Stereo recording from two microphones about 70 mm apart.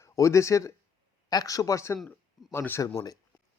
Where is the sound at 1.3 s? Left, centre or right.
Left.